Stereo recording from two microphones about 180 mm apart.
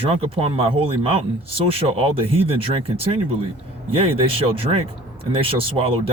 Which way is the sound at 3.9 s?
30° right (ahead or behind).